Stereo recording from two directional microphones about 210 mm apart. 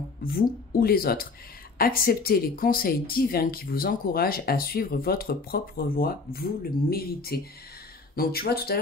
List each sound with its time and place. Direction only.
0.2 s speech: 45° left (ahead or behind)